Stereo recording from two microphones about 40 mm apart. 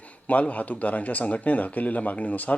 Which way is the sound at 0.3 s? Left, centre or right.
Left.